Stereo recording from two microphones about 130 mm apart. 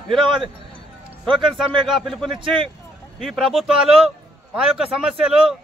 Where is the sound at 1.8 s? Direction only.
Centre (ahead or behind).